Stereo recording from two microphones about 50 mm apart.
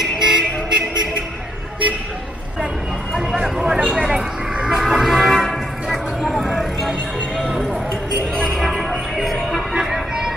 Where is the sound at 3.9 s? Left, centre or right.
Centre.